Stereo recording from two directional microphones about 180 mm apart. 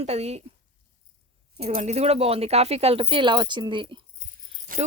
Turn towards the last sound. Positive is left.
turn(degrees=-50)  # may be behind; listen again after turning